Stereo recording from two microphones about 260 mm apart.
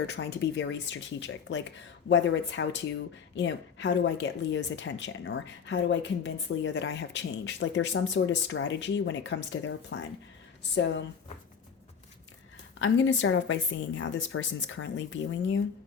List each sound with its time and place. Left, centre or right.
0.1 s a woman's voice: left
12.8 s a woman's voice: left